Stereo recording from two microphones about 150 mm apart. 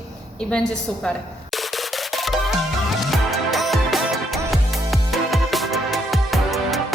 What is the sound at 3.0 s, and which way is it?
Music, centre (ahead or behind).